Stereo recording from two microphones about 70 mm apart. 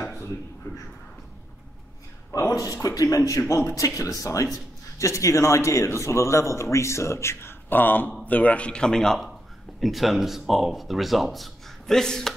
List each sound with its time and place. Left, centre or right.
2.3 s a man's voice: left
2.8 s a man's voice: left
7.7 s a man's voice: left; by 12.4 s centre